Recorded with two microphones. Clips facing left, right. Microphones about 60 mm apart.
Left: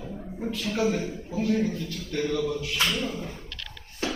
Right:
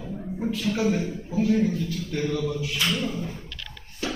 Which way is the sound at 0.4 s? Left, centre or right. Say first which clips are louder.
Right 1 dB; centre.